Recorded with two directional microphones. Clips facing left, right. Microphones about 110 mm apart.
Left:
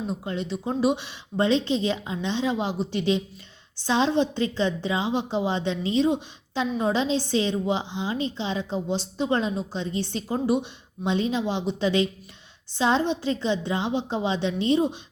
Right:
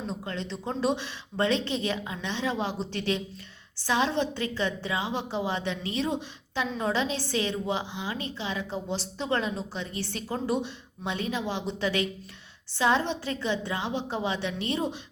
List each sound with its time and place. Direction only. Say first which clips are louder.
0.1 s a woman's voice: left 5 dB; 15° left (ahead or behind)